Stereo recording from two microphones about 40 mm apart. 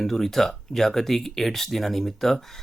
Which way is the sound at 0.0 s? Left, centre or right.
Centre.